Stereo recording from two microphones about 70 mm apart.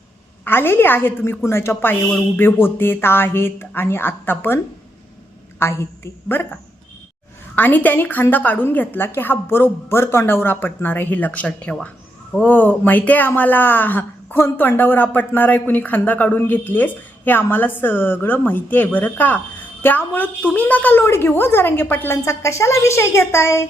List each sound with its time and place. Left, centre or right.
0.4 s a woman's voice: left
22.2 s a woman's voice: left